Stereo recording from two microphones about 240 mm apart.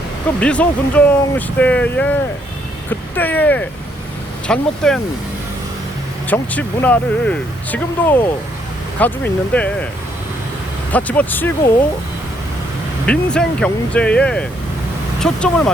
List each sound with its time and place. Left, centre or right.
0.3 s speech: centre
6.2 s speech: centre
10.9 s speech: centre
13.3 s speech: centre